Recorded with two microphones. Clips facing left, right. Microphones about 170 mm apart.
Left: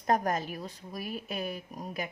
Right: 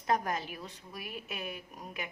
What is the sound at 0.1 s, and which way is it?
A woman's voice, 45° left (ahead or behind).